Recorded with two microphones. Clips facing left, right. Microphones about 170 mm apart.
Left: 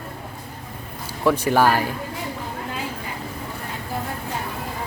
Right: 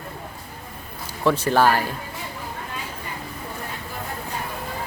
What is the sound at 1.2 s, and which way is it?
Speech, 10° left (ahead or behind).